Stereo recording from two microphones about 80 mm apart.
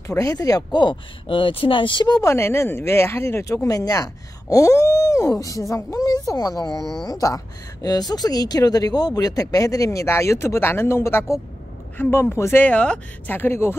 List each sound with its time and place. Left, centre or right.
0.0 s speech: left
2.3 s speech: left
3.4 s speech: left; by 13.4 s centre
13.4 s speech: left